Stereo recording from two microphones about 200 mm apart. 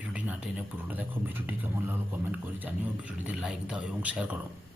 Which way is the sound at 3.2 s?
5° right (ahead or behind).